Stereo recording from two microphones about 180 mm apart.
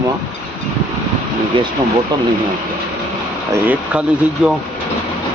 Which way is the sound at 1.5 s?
30° right (ahead or behind).